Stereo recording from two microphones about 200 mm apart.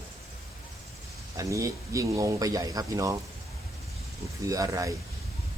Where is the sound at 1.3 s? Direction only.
15° right (ahead or behind).